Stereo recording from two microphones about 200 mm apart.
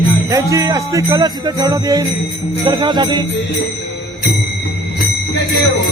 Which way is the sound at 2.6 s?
15° right (ahead or behind).